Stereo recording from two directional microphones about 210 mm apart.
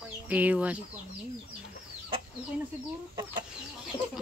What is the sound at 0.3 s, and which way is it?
Speech, 5° right (ahead or behind).